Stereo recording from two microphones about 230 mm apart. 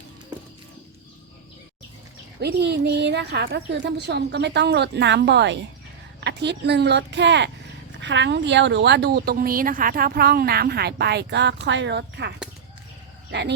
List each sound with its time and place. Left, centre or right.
2.4 s a woman's voice: right